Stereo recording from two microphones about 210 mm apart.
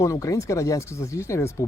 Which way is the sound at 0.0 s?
15° left (ahead or behind).